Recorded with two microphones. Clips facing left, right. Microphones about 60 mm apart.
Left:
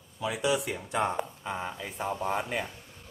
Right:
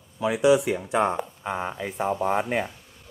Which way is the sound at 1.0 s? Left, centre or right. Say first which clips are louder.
Right 5 dB; right.